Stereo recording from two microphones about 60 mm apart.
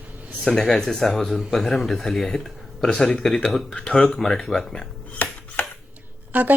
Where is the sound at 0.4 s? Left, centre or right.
Centre.